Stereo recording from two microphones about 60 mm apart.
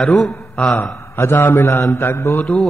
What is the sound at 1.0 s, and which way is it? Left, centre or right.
A man's voice, left.